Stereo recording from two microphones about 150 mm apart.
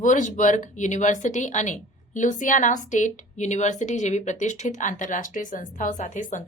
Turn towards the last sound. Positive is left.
turn(degrees=55)  # may be behind; listen again after turning